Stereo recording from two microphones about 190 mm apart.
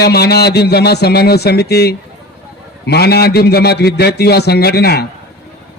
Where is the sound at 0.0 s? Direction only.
60° left (ahead or behind).